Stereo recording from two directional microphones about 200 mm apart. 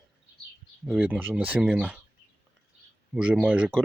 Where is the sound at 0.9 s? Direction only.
5° right (ahead or behind).